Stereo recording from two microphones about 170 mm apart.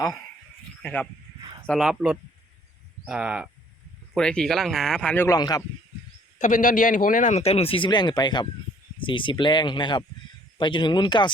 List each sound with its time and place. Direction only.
0.8 s speech: 10° left (ahead or behind)
4.1 s speech: 5° left (ahead or behind)
5.3 s speech: 20° left (ahead or behind)
6.4 s speech: 50° left (ahead or behind); by 11.3 s 25° left (ahead or behind)